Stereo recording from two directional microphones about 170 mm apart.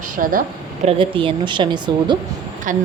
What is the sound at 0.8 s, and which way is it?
Speech, 30° right (ahead or behind).